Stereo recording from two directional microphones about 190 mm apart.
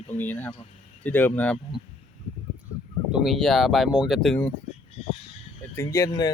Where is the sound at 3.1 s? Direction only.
5° right (ahead or behind).